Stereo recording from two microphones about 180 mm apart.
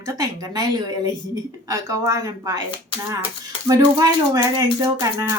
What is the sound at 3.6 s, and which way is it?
Speech, 20° right (ahead or behind).